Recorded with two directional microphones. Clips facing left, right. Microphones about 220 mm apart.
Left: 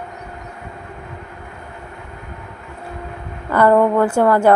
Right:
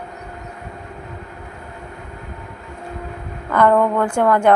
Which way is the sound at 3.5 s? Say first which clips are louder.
Left 2 dB; 10° left (ahead or behind).